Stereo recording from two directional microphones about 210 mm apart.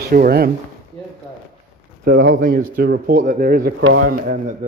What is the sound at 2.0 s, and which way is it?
Speech, 45° right (ahead or behind).